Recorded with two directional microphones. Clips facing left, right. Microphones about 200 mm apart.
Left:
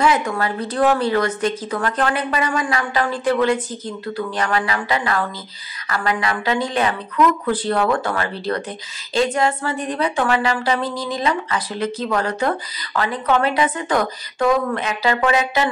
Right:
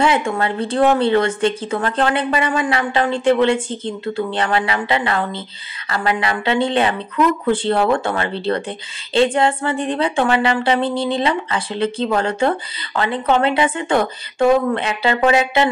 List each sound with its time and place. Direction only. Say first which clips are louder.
0.0 s a woman's voice: right 1 dB; 25° right (ahead or behind)